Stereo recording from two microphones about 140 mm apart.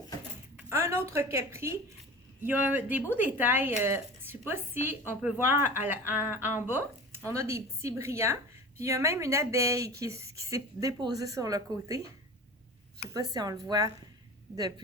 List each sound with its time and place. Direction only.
0.7 s a woman's voice: 20° right (ahead or behind)
13.1 s a woman's voice: 25° right (ahead or behind)